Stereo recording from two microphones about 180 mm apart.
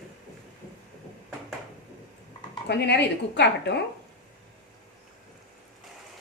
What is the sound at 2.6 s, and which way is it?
A woman's voice, 70° left (ahead or behind).